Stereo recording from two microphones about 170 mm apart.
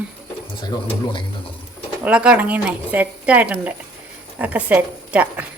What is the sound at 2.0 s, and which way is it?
Speech, 5° right (ahead or behind).